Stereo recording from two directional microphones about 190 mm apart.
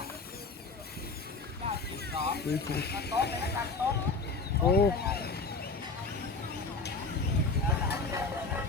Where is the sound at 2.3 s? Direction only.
60° left (ahead or behind).